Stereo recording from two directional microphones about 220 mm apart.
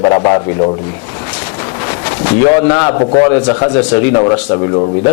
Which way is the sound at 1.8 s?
15° left (ahead or behind).